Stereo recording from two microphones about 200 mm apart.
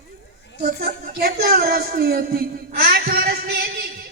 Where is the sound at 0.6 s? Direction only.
50° right (ahead or behind).